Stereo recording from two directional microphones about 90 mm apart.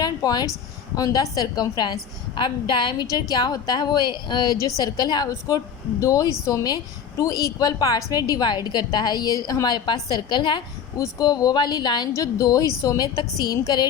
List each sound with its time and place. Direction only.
0.0 s a sound: 45° left (ahead or behind)
0.9 s a woman's voice: 40° left (ahead or behind); by 3.1 s 60° left (ahead or behind)
3.1 s a woman's voice: 45° left (ahead or behind)
5.3 s a woman's voice: 35° left (ahead or behind); by 10.6 s 60° left (ahead or behind)
10.9 s a woman's voice: 40° left (ahead or behind)
12.1 s a woman's voice: 45° left (ahead or behind)